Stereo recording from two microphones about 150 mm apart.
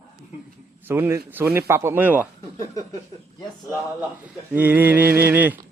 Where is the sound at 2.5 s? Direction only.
55° right (ahead or behind).